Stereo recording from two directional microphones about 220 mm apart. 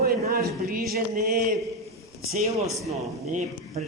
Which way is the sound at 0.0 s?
45° right (ahead or behind).